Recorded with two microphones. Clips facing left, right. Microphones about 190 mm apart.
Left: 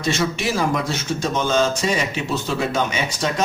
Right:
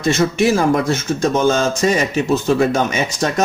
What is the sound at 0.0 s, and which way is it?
Speech, 50° right (ahead or behind).